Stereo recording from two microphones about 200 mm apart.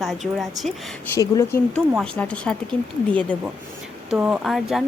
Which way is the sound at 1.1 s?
15° left (ahead or behind).